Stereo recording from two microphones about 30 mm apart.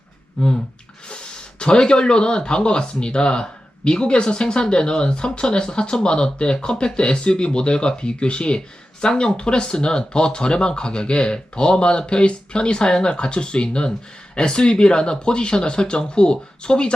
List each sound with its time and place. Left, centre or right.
0.4 s speech: left